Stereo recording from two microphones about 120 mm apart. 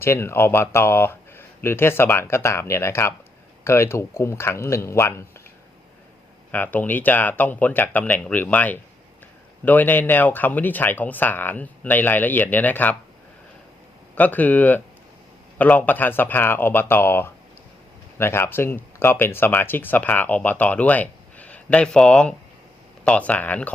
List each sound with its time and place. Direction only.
0.0 s speech: 20° left (ahead or behind)
6.5 s speech: 15° left (ahead or behind)
14.2 s speech: 15° left (ahead or behind)